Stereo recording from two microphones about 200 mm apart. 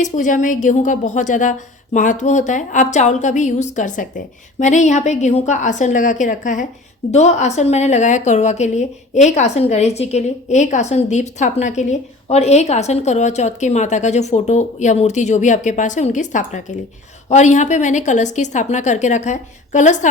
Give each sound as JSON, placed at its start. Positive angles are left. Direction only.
{"t": 0.0, "sound": "a woman's voice", "side_deg": 40}